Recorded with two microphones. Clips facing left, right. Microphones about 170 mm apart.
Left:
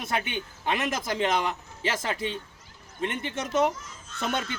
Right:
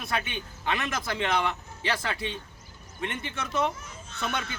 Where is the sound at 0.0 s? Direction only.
20° left (ahead or behind).